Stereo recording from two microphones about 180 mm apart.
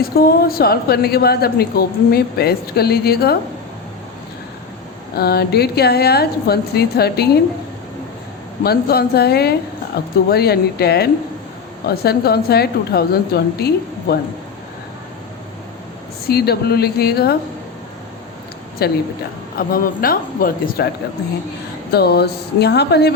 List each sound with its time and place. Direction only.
0.0 s a woman's voice: 55° left (ahead or behind)
5.1 s a woman's voice: 60° left (ahead or behind)
8.6 s a woman's voice: 60° left (ahead or behind)
16.3 s a woman's voice: 60° left (ahead or behind)
18.8 s a woman's voice: 60° left (ahead or behind)
21.9 s a woman's voice: 65° left (ahead or behind)